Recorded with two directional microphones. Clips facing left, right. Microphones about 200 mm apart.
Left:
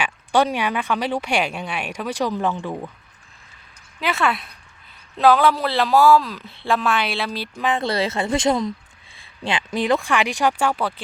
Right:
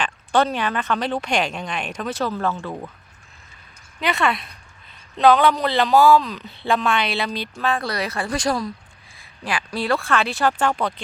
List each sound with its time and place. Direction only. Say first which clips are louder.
0.0 s speech: left 1 dB; 10° left (ahead or behind)
4.0 s speech: even; centre (ahead or behind)
7.6 s a woman's voice: left 3 dB; 20° left (ahead or behind)